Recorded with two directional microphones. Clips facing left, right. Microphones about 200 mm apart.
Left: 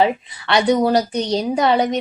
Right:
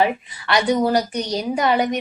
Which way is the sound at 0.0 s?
25° left (ahead or behind).